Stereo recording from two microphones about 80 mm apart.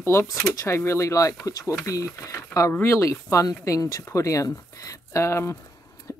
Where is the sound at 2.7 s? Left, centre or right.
Left.